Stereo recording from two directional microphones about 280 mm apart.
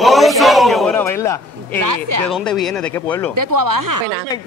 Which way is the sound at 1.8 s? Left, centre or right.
Right.